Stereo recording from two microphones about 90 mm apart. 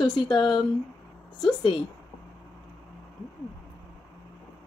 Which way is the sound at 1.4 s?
55° left (ahead or behind).